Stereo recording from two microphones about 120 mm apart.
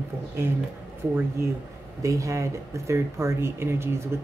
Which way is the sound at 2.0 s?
25° right (ahead or behind).